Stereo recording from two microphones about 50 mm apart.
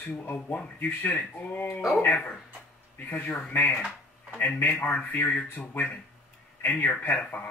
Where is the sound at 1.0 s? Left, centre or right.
Left.